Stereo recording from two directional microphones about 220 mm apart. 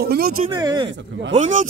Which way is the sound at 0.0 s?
45° right (ahead or behind).